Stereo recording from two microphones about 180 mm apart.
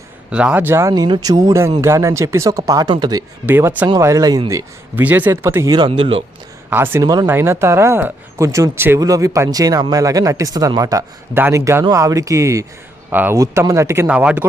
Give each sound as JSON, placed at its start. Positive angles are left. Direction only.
{"t": 0.3, "sound": "speech", "side_deg": -5}
{"t": 6.7, "sound": "speech", "side_deg": -10}